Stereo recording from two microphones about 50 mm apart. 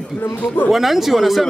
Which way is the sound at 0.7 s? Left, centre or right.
Centre.